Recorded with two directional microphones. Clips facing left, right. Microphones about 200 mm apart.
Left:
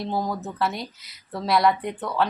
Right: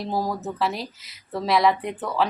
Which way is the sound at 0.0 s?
5° right (ahead or behind).